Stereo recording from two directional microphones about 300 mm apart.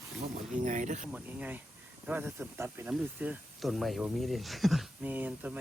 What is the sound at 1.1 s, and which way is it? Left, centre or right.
Speech, centre.